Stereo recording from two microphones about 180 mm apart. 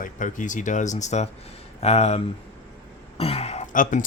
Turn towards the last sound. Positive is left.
turn(degrees=45)  # may be behind; listen again after turning